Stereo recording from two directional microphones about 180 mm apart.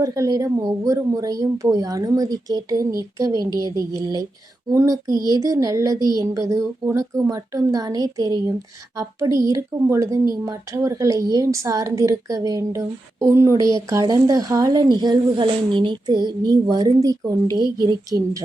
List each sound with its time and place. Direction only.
0.0 s a woman's voice: 20° right (ahead or behind)